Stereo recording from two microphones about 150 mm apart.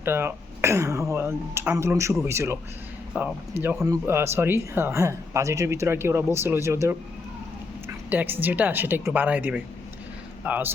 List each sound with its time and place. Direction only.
0.0 s speech: 15° right (ahead or behind)
8.1 s speech: 10° right (ahead or behind)